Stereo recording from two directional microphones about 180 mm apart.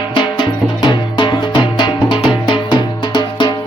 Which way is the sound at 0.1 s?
25° left (ahead or behind).